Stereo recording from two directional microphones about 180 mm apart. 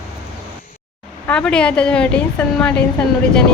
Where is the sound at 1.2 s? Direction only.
5° left (ahead or behind).